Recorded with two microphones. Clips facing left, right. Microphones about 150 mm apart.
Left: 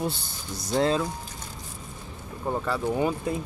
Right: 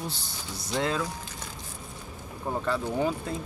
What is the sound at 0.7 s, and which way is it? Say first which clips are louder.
Speech: left 5 dB; 35° left (ahead or behind).